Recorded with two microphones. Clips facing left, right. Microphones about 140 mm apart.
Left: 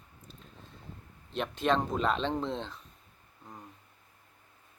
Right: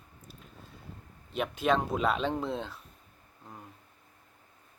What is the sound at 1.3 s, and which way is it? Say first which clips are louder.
Speech: right 1 dB; 5° right (ahead or behind).